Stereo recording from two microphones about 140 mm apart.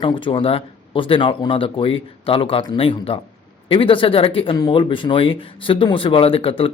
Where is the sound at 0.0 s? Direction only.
35° left (ahead or behind).